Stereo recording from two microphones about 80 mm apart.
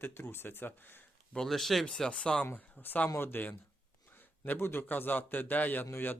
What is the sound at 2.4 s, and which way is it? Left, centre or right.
Speech, left.